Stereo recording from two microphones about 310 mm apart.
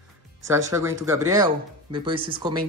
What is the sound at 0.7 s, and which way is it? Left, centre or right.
Speech, centre.